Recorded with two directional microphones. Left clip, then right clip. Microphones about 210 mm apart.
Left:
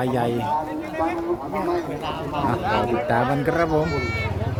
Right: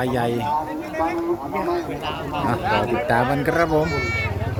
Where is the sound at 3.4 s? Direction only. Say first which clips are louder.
Right 2 dB; centre (ahead or behind).